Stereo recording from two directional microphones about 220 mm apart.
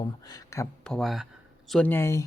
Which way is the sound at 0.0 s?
15° left (ahead or behind).